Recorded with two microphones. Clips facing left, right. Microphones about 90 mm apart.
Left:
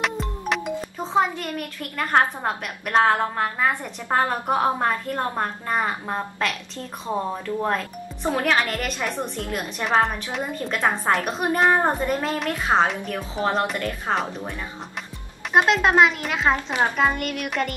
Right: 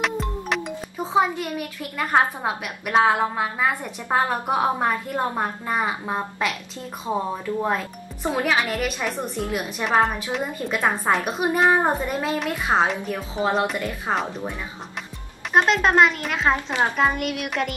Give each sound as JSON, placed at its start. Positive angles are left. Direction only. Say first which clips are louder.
{"t": 0.0, "sound": "music", "louder": "right 1 dB", "side_deg": 0}
{"t": 1.1, "sound": "a woman's voice", "louder": "right 1 dB", "side_deg": -10}
{"t": 15.5, "sound": "a woman's voice", "louder": "even", "side_deg": 0}